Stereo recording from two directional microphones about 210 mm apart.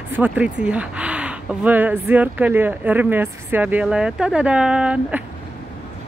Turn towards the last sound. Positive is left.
turn(degrees=-5)  # may be behind; listen again after turning